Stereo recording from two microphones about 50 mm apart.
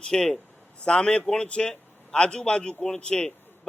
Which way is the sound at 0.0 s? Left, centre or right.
Centre.